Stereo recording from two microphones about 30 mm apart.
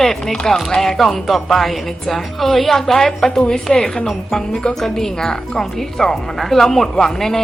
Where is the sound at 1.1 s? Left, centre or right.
Centre.